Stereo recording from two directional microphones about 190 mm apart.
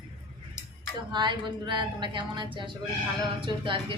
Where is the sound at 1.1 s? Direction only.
25° right (ahead or behind).